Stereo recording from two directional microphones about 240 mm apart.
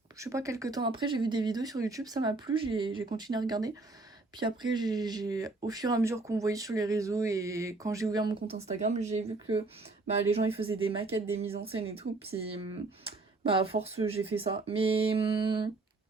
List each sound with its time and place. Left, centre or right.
0.2 s speech: centre
13.6 s speech: right